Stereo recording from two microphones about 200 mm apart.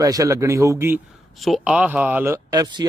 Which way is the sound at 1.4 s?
Centre (ahead or behind).